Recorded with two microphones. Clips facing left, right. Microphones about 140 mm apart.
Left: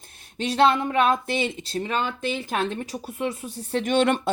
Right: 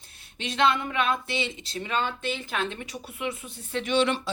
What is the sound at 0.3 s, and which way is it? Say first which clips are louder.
Speech: left 5 dB; 40° left (ahead or behind).